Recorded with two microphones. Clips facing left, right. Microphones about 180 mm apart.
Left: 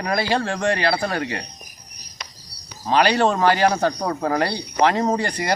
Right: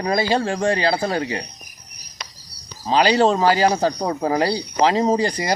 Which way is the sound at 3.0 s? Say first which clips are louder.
Right 2 dB; 15° right (ahead or behind).